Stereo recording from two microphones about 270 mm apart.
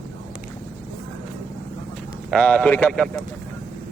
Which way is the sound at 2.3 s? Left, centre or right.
Centre.